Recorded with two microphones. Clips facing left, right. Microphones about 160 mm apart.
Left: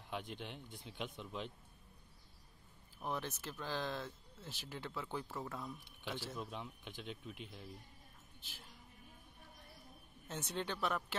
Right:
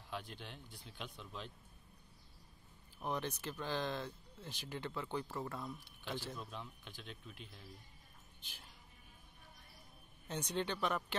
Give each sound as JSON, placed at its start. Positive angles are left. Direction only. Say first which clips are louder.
{"t": 0.1, "sound": "speech", "louder": "left 2 dB", "side_deg": 15}
{"t": 3.0, "sound": "speech", "louder": "right 2 dB", "side_deg": 5}
{"t": 8.4, "sound": "a woman's voice", "louder": "left 2 dB", "side_deg": 5}
{"t": 10.2, "sound": "speech", "louder": "right 3 dB", "side_deg": 5}